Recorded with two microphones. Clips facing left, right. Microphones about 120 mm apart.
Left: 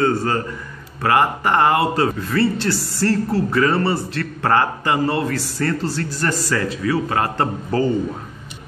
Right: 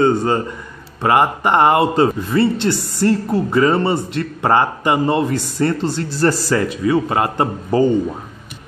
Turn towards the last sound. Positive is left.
turn(degrees=-15)  # may be behind; listen again after turning